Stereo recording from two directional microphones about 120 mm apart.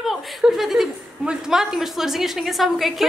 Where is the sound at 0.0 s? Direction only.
Centre (ahead or behind).